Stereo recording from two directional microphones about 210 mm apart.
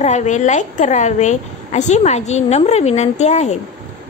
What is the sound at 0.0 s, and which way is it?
A woman's voice, 35° left (ahead or behind).